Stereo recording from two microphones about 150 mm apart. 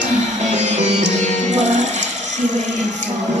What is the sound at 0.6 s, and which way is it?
Music, 50° right (ahead or behind).